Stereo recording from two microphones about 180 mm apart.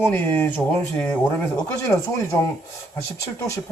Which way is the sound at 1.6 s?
15° left (ahead or behind).